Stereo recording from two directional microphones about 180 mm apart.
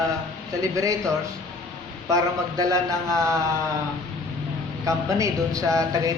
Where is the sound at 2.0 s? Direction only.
20° right (ahead or behind).